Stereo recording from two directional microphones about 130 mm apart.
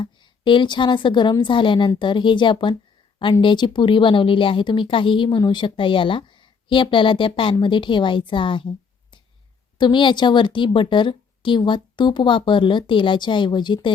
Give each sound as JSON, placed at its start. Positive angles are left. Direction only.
{"t": 0.0, "sound": "a woman's voice", "side_deg": 40}
{"t": 9.7, "sound": "a woman's voice", "side_deg": 35}